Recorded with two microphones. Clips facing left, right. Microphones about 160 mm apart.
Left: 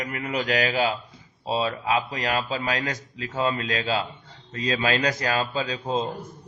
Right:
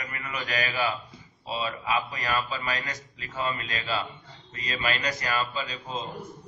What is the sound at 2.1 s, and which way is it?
A man's voice, 80° left.